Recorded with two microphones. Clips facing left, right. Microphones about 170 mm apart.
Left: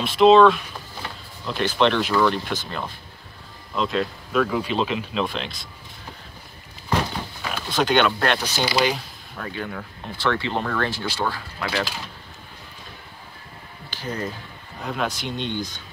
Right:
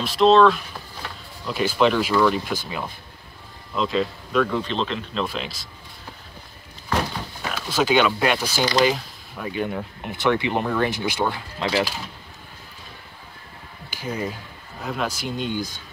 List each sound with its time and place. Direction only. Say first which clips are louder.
0.0 s speech: left 2 dB; centre (ahead or behind)
5.2 s speech: left 1 dB; 5° right (ahead or behind)
7.5 s speech: right 1 dB; 5° right (ahead or behind)
8.6 s speech: right 3 dB; 5° left (ahead or behind)
9.4 s speech: right 5 dB; 15° right (ahead or behind)
13.8 s a sound: right 1 dB; 10° right (ahead or behind)
14.8 s speech: even; centre (ahead or behind)